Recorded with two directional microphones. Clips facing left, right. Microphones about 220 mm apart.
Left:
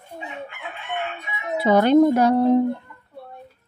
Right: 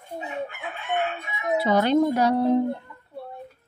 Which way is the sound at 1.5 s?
50° left (ahead or behind).